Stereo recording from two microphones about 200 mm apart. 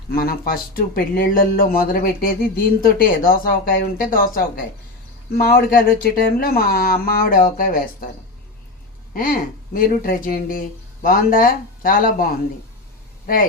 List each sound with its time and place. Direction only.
0.1 s speech: 50° left (ahead or behind)
9.1 s speech: 45° left (ahead or behind)